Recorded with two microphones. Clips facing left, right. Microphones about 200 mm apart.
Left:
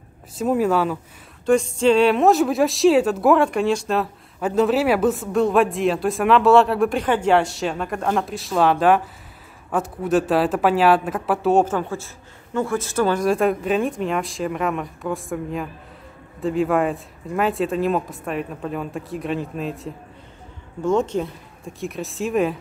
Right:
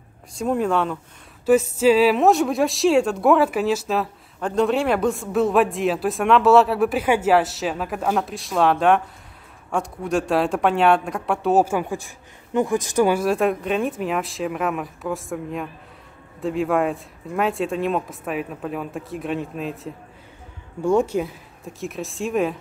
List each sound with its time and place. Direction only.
0.4 s a woman's voice: 5° left (ahead or behind)
1.4 s a woman's voice: 5° right (ahead or behind)
11.6 s speech: 10° right (ahead or behind)
13.2 s a woman's voice: centre (ahead or behind)